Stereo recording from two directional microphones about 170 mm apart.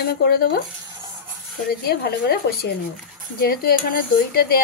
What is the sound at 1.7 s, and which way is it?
Speech, 65° left (ahead or behind).